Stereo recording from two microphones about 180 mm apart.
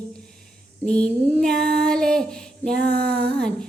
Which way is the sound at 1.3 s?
5° left (ahead or behind).